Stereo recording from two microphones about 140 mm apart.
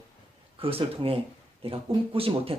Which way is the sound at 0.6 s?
40° right (ahead or behind).